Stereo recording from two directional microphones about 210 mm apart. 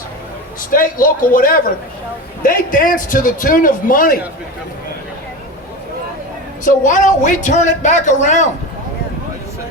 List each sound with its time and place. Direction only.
0.7 s a man's voice: 40° left (ahead or behind)
6.7 s a man's voice: 35° left (ahead or behind)